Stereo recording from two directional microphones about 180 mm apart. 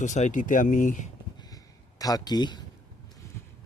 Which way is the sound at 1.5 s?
20° left (ahead or behind).